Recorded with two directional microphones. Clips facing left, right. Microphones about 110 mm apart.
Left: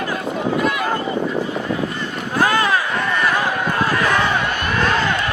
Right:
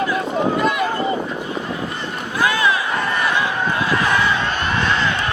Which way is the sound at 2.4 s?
45° left (ahead or behind).